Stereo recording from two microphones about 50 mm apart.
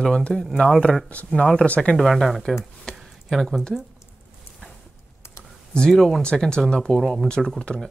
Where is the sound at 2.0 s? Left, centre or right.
Centre.